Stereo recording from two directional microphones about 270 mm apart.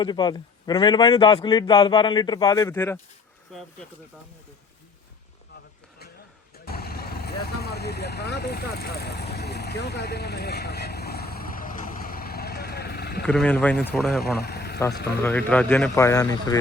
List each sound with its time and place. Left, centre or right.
0.0 s a man's voice: centre
6.7 s vehicle: left
13.2 s speech: centre
14.4 s vehicle: left
15.2 s a man's voice: centre